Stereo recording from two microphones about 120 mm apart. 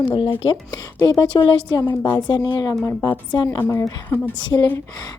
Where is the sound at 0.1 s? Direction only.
45° left (ahead or behind).